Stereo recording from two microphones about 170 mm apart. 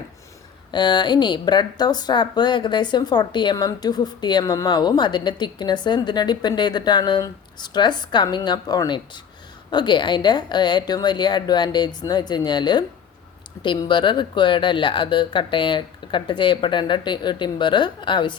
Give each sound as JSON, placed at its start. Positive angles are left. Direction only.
{"t": 0.7, "sound": "speech", "side_deg": 25}